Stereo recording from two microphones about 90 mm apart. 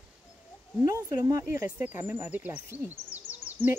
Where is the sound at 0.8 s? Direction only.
35° right (ahead or behind).